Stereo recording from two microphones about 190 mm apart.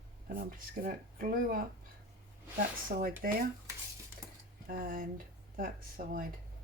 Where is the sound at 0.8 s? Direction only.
45° right (ahead or behind).